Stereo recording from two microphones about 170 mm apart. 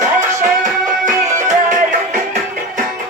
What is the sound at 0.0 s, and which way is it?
Music, 45° right (ahead or behind).